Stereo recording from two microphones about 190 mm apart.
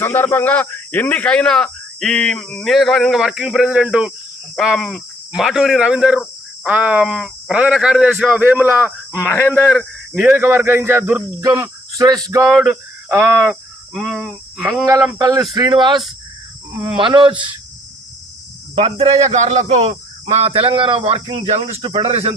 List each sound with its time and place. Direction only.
0.0 s a man's voice: 10° left (ahead or behind); by 8.9 s 10° right (ahead or behind)
9.1 s speech: 10° left (ahead or behind); by 12.2 s 20° right (ahead or behind)
12.5 s speech: 5° right (ahead or behind)
13.4 s speech: centre (ahead or behind)
15.2 s speech: 20° right (ahead or behind)
17.0 s speech: 25° right (ahead or behind)
18.8 s speech: 30° right (ahead or behind)